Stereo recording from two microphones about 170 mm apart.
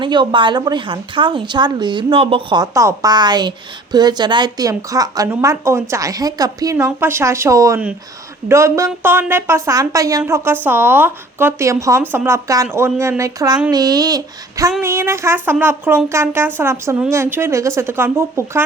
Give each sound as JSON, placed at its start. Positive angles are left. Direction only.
{"t": 0.0, "sound": "a woman's voice", "side_deg": -25}